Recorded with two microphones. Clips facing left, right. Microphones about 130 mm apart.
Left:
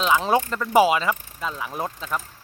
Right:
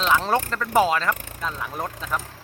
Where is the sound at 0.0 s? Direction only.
5° left (ahead or behind).